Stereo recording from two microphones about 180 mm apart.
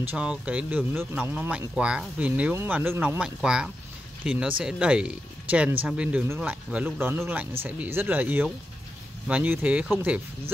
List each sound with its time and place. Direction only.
0.0 s speech: 10° right (ahead or behind)